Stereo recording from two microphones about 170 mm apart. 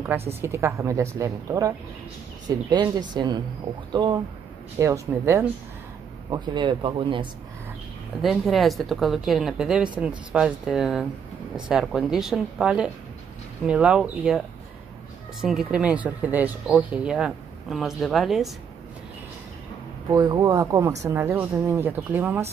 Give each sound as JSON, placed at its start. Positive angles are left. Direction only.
{"t": 0.4, "sound": "a woman's voice", "side_deg": -15}
{"t": 6.3, "sound": "speech", "side_deg": -25}
{"t": 8.2, "sound": "speech", "side_deg": 0}
{"t": 15.4, "sound": "speech", "side_deg": -5}
{"t": 20.1, "sound": "a woman's voice", "side_deg": -25}